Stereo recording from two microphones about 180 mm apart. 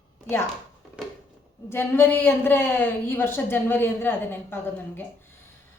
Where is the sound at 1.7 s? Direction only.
10° left (ahead or behind).